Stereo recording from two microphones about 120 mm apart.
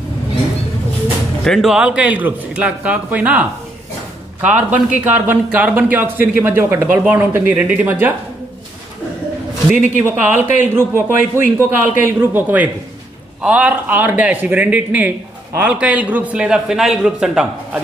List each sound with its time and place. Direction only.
1.4 s speech: centre (ahead or behind); by 8.1 s 15° right (ahead or behind)
9.7 s a man's voice: 15° right (ahead or behind)